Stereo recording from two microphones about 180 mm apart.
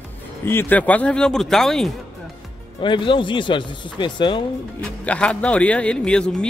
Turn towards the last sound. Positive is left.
turn(degrees=5)  # may be behind; listen again after turning